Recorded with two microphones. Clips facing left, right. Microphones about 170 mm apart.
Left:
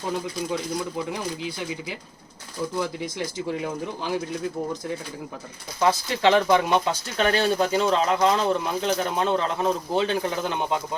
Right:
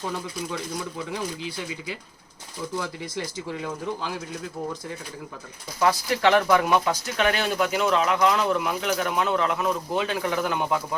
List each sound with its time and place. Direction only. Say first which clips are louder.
2.8 s speech: left 3 dB; 15° left (ahead or behind)
5.8 s speech: left 1 dB; 25° left (ahead or behind)